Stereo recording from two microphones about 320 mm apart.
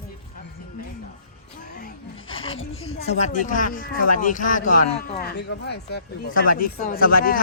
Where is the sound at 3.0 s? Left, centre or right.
Left.